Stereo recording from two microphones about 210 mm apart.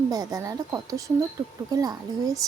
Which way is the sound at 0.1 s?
15° right (ahead or behind).